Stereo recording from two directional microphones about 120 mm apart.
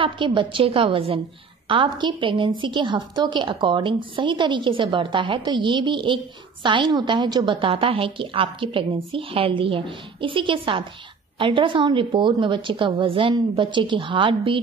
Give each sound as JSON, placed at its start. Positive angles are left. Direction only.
{"t": 0.0, "sound": "a woman's voice", "side_deg": -45}